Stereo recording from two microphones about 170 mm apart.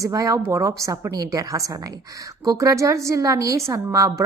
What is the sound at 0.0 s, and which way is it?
A woman's voice, 20° right (ahead or behind).